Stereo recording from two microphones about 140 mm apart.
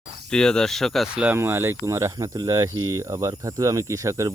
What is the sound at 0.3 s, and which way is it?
Speech, 5° left (ahead or behind).